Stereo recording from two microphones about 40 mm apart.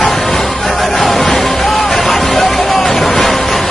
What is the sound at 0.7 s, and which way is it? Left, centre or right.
Music, centre.